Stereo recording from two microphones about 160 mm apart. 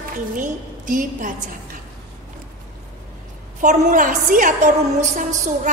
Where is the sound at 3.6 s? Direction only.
55° right (ahead or behind).